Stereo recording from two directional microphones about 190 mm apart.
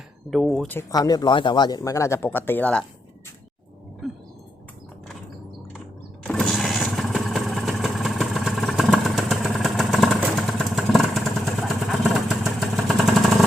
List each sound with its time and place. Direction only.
0.3 s speech: centre (ahead or behind)
0.8 s speech: 20° left (ahead or behind)
4.0 s a sound: centre (ahead or behind)
6.2 s vehicle: centre (ahead or behind)